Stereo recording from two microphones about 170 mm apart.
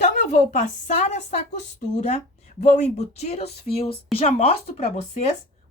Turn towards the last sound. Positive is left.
turn(degrees=40)  # may be behind; listen again after turning